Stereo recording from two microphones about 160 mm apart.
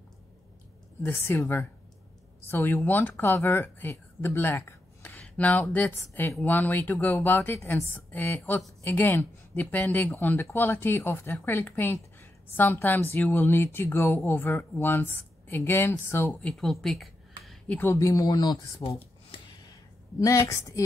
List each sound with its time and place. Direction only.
1.0 s a woman's voice: 15° left (ahead or behind)
16.4 s speech: centre (ahead or behind)
16.8 s a sound: centre (ahead or behind)
17.7 s speech: 15° left (ahead or behind)
20.2 s speech: 20° left (ahead or behind)